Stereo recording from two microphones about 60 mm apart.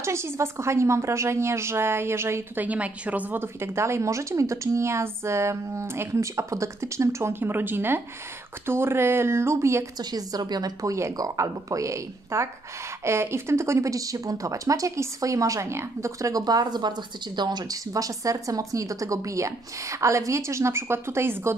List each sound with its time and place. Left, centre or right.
0.0 s speech: right
2.5 s a woman's voice: right
3.3 s speech: right
7.3 s speech: right
9.9 s speech: right
15.6 s speech: right
16.2 s speech: right
17.6 s speech: right